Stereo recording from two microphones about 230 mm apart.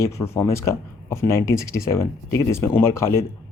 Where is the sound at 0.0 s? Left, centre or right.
Centre.